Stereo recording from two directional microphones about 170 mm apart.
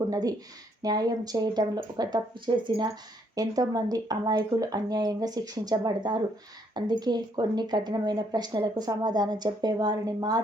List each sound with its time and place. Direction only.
0.1 s speech: 20° right (ahead or behind)